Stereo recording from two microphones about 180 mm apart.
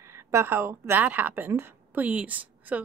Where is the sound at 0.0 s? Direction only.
15° right (ahead or behind).